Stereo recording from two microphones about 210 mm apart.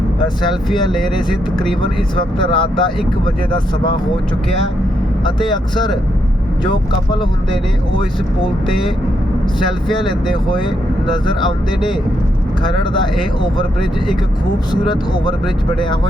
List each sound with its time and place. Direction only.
0.7 s speech: centre (ahead or behind)
1.8 s speech: 25° left (ahead or behind)
10.0 s speech: centre (ahead or behind)
11.0 s speech: 20° left (ahead or behind)
14.7 s speech: 20° left (ahead or behind)